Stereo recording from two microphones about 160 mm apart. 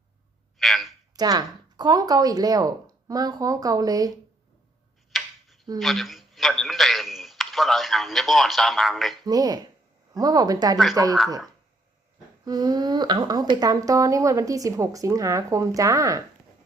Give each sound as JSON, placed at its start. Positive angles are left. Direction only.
{"t": 0.6, "sound": "a sound", "side_deg": 0}
{"t": 1.1, "sound": "speech", "side_deg": -25}
{"t": 5.1, "sound": "tick-tock", "side_deg": 0}
{"t": 5.8, "sound": "a man's voice", "side_deg": 0}
{"t": 9.2, "sound": "speech", "side_deg": -25}
{"t": 12.5, "sound": "speech", "side_deg": -25}